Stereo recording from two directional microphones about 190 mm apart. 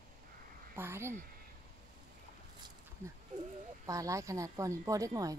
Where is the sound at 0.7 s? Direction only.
15° right (ahead or behind).